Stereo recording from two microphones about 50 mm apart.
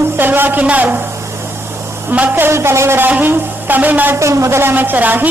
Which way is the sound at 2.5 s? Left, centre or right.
Right.